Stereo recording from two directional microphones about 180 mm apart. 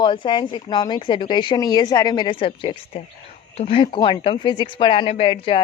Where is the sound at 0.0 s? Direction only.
25° left (ahead or behind).